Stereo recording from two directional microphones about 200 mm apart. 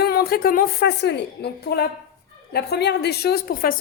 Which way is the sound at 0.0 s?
50° left (ahead or behind).